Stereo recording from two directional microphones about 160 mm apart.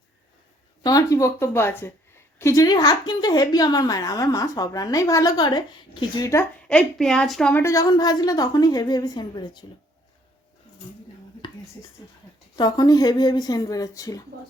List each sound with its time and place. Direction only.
0.8 s a woman's voice: 25° left (ahead or behind)
6.7 s a woman's voice: 5° left (ahead or behind)
7.6 s a woman's voice: 20° left (ahead or behind)
11.8 s a woman's voice: 20° left (ahead or behind)